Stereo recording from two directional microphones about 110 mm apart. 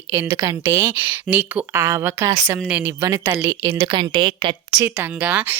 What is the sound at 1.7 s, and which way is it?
Speech, 25° right (ahead or behind).